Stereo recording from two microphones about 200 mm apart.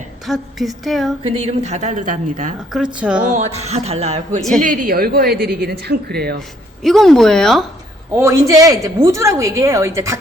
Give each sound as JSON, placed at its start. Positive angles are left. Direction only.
{"t": 0.3, "sound": "speech", "side_deg": 0}
{"t": 1.2, "sound": "a woman's voice", "side_deg": -30}
{"t": 2.7, "sound": "speech", "side_deg": -5}
{"t": 3.3, "sound": "a woman's voice", "side_deg": -35}
{"t": 6.8, "sound": "speech", "side_deg": 0}
{"t": 8.1, "sound": "a woman's voice", "side_deg": -15}